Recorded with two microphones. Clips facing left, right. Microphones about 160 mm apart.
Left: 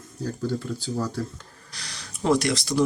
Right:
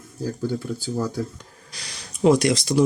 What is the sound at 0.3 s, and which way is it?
Speech, 5° right (ahead or behind).